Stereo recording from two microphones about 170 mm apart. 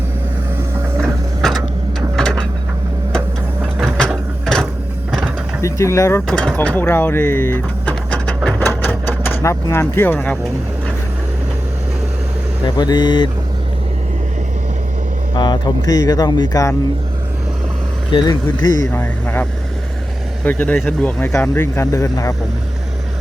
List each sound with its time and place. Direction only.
1.4 s a sound: centre (ahead or behind)
4.4 s a sound: 5° left (ahead or behind)
5.6 s speech: 15° left (ahead or behind)
6.2 s speech: 5° left (ahead or behind)
8.4 s a sound: 10° left (ahead or behind)
12.6 s speech: 25° left (ahead or behind)
15.4 s speech: 25° left (ahead or behind)
18.1 s speech: 30° left (ahead or behind)
18.9 s speech: 10° left (ahead or behind)